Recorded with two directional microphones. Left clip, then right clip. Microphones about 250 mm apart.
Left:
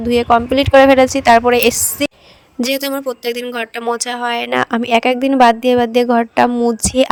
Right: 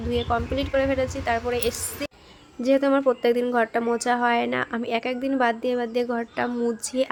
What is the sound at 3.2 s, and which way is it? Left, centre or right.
A woman's voice, left.